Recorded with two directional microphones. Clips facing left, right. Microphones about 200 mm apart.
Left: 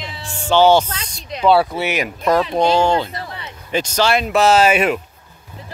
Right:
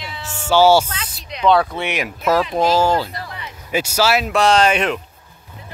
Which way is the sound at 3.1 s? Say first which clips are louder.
Left 1 dB; 30° left (ahead or behind).